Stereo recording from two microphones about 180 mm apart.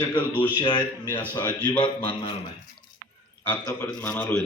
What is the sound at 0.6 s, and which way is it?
Speech, 25° left (ahead or behind).